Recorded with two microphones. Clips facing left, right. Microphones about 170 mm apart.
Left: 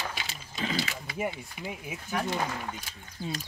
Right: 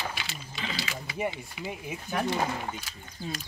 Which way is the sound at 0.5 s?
50° left (ahead or behind).